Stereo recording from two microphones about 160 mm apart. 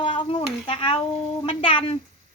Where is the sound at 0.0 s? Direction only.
30° left (ahead or behind).